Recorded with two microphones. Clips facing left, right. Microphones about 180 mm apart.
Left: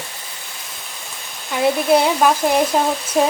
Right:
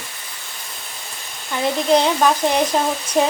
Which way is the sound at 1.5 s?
10° left (ahead or behind).